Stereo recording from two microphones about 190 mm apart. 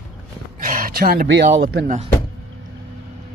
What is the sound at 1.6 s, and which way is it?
Speech, 50° right (ahead or behind).